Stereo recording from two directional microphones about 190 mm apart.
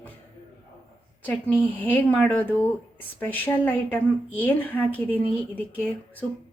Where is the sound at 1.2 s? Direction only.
10° left (ahead or behind).